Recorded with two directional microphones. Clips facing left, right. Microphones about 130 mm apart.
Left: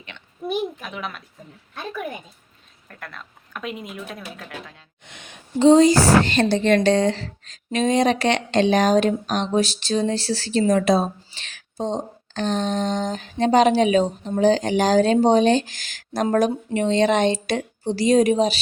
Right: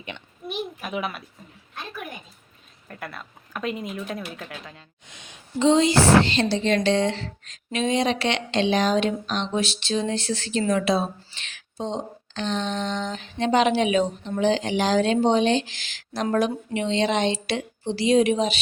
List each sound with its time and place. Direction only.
0.8 s a child's voice: 10° right (ahead or behind)
2.9 s speech: 5° right (ahead or behind)
5.0 s a sound: 60° left (ahead or behind)
5.5 s a woman's voice: 40° left (ahead or behind)
10.7 s a sound: 40° left (ahead or behind)
16.3 s a woman's voice: 45° left (ahead or behind)